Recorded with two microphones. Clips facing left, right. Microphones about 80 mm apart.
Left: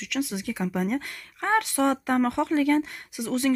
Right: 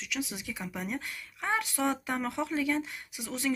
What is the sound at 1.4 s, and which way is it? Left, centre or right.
Speech, left.